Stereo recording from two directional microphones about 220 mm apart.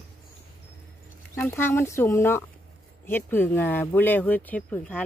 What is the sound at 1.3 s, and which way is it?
Speech, 10° left (ahead or behind).